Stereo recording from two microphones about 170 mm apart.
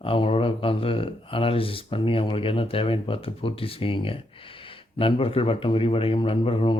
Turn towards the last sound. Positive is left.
turn(degrees=35)  # may be behind; listen again after turning